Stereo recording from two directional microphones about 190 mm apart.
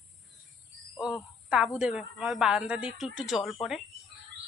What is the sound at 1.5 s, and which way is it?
A woman's voice, 5° right (ahead or behind).